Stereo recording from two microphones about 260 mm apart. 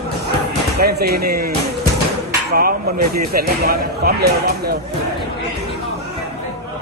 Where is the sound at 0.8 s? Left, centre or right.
Right.